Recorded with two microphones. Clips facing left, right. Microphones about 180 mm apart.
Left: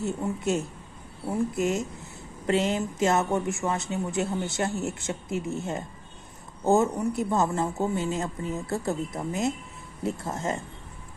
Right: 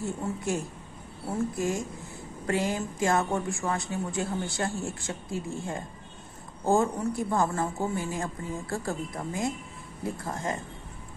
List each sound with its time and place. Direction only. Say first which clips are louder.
0.0 s a woman's voice: left 3 dB; 20° left (ahead or behind)